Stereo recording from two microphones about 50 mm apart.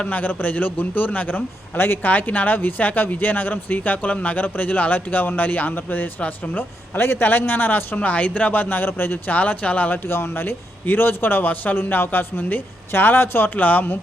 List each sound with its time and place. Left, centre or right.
0.0 s speech: left
6.1 s speech: left
6.6 s speech: left
9.3 s speech: left
10.1 s speech: left